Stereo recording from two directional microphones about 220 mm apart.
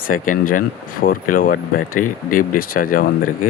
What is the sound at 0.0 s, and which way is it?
Speech, 40° left (ahead or behind).